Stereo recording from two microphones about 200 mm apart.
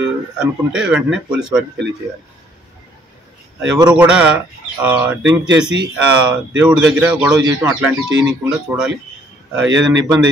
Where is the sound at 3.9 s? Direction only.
5° right (ahead or behind).